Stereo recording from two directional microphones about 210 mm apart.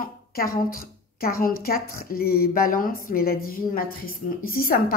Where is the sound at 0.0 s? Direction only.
45° left (ahead or behind).